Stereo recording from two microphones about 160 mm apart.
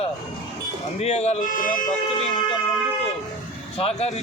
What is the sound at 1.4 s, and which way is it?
Speech, 55° left (ahead or behind).